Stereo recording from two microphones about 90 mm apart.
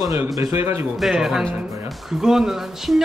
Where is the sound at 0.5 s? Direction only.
25° right (ahead or behind).